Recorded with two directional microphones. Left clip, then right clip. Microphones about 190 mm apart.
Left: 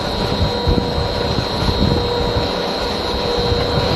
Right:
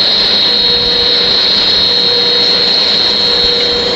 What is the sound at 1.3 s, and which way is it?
Vacuum cleaner, centre (ahead or behind).